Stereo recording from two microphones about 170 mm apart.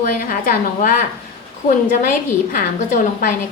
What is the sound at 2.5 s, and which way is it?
Speech, 50° left (ahead or behind).